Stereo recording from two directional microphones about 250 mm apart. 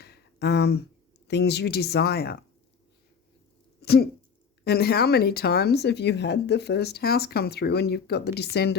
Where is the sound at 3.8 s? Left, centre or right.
Left.